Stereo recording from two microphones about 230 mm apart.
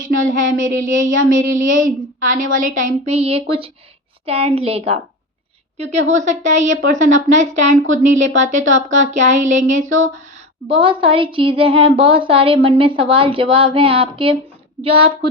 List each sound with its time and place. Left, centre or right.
0.0 s a woman's voice: right